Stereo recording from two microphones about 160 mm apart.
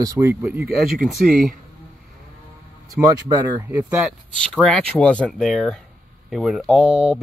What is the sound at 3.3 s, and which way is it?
Speech, 25° right (ahead or behind).